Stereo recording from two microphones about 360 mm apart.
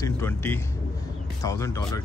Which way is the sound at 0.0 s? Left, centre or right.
Centre.